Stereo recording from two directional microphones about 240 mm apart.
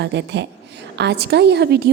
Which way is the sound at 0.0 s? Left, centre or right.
Right.